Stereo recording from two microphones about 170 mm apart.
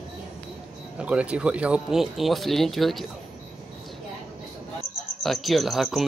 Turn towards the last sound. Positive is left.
turn(degrees=0)  # may be behind; listen again after turning